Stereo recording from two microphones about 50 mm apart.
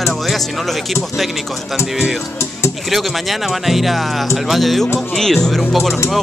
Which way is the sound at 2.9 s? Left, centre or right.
Centre.